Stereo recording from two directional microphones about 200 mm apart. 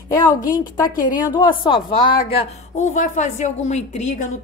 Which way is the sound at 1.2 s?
20° left (ahead or behind).